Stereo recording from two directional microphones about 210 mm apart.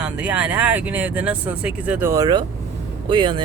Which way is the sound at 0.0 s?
5° right (ahead or behind).